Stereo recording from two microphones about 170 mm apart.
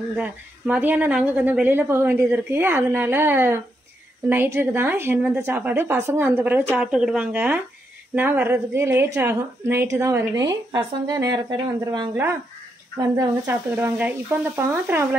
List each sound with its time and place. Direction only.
0.1 s a woman's voice: 10° right (ahead or behind)